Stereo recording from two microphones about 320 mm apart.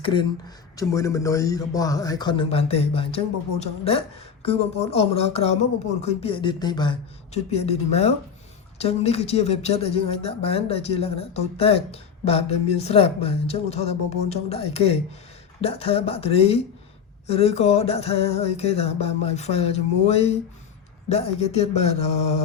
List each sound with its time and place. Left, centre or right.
0.0 s speech: centre